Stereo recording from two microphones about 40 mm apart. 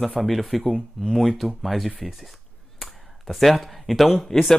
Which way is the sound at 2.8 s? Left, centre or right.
Centre.